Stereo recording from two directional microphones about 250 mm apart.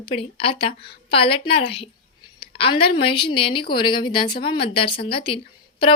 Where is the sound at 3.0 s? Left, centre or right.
Left.